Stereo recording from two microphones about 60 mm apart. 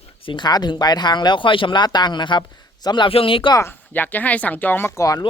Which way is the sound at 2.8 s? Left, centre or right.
Left.